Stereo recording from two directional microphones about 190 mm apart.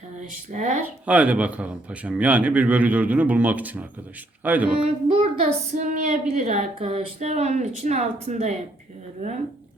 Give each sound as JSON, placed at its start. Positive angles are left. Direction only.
{"t": 0.5, "sound": "speech", "side_deg": -40}
{"t": 1.0, "sound": "a man's voice", "side_deg": -5}
{"t": 5.1, "sound": "speech", "side_deg": -30}